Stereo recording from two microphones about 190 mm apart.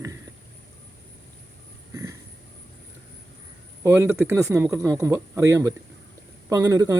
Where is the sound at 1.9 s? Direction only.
15° right (ahead or behind).